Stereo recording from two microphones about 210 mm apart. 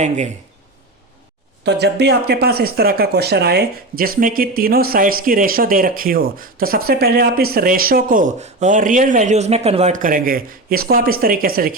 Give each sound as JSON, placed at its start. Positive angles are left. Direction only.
{"t": 1.6, "sound": "speech", "side_deg": -50}